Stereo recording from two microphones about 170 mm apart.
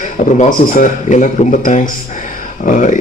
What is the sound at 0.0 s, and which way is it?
A man's voice, 45° left (ahead or behind).